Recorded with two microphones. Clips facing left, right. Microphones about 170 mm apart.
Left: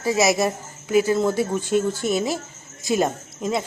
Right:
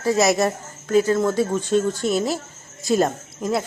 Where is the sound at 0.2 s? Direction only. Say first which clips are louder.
Right 1 dB; centre (ahead or behind).